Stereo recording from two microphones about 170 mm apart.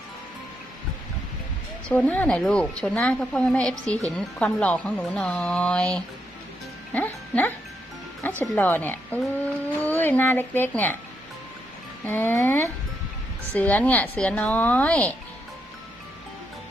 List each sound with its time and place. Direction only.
1.9 s speech: 10° left (ahead or behind)
12.0 s speech: 10° left (ahead or behind)